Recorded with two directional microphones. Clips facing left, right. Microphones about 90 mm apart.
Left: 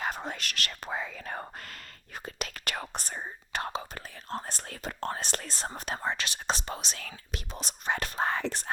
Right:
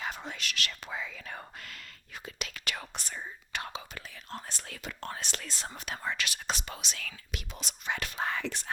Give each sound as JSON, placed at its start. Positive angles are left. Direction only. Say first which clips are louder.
{"t": 0.0, "sound": "speech", "louder": "left 4 dB", "side_deg": 45}